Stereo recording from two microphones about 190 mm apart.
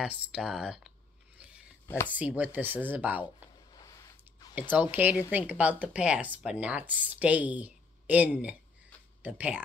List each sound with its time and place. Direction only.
0.0 s speech: 5° right (ahead or behind)
2.0 s speech: 10° right (ahead or behind)
3.7 s squish: 20° left (ahead or behind)
4.6 s speech: 10° right (ahead or behind)